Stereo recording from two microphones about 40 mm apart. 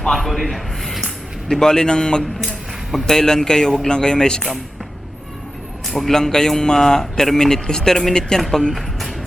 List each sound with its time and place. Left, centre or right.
0.1 s a sound: centre
1.5 s a man's voice: centre
5.9 s a man's voice: centre
6.1 s a man's voice: centre
8.7 s music: centre